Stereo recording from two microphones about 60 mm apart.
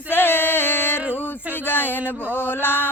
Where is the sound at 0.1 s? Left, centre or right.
Left.